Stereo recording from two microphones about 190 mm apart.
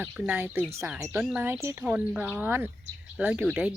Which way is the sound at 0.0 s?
10° right (ahead or behind).